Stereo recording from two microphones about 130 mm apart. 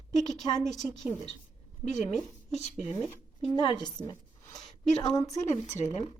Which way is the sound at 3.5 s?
35° left (ahead or behind).